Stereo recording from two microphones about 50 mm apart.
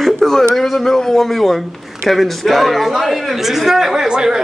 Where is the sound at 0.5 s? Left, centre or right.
Centre.